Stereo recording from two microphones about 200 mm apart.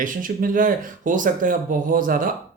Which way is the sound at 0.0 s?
40° right (ahead or behind).